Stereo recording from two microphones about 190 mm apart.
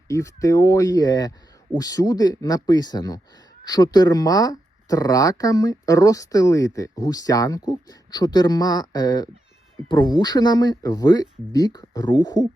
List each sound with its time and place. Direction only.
0.1 s speech: 15° left (ahead or behind)